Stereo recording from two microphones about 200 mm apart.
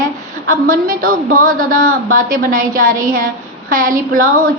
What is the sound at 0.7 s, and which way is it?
A woman's voice, 45° right (ahead or behind).